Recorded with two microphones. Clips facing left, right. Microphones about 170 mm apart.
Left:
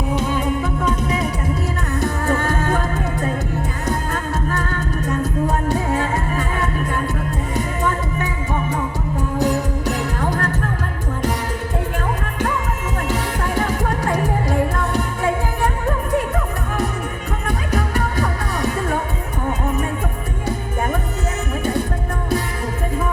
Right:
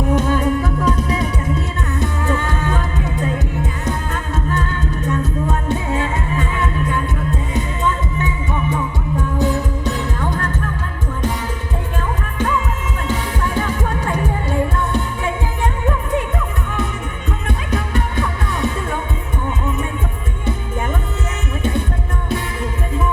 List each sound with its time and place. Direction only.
0.1 s music: 15° left (ahead or behind)
2.0 s music: 40° left (ahead or behind)
4.5 s music: 40° left (ahead or behind)
8.7 s music: 40° left (ahead or behind)
13.6 s music: 40° left (ahead or behind)
17.7 s music: 40° left (ahead or behind)